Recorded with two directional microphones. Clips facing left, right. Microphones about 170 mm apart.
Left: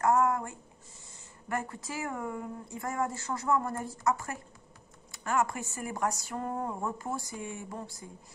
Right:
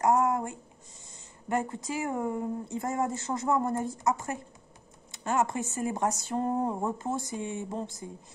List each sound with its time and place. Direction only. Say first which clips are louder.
0.0 s a woman's voice: right 1 dB; 20° right (ahead or behind)